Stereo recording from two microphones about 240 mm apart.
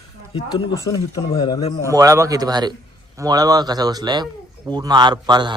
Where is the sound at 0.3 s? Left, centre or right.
Centre.